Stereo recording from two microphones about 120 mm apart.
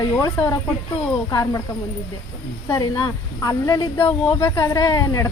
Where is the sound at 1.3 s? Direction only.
30° left (ahead or behind).